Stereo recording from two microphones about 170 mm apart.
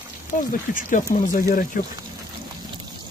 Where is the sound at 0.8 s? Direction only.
50° left (ahead or behind).